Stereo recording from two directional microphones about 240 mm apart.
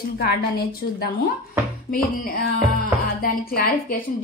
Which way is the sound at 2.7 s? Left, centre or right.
Left.